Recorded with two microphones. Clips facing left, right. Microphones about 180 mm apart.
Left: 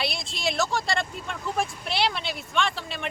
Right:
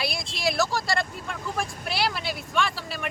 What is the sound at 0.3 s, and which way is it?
Speech, centre (ahead or behind).